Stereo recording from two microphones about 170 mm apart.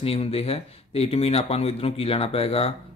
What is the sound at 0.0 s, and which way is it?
Speech, 35° left (ahead or behind).